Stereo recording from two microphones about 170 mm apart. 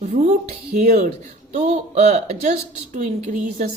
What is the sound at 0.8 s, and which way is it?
Speech, 45° right (ahead or behind).